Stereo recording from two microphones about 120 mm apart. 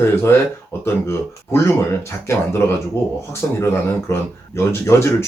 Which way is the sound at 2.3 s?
20° left (ahead or behind).